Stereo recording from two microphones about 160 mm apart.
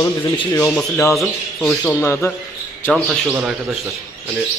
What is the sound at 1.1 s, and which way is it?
Speech, 5° left (ahead or behind).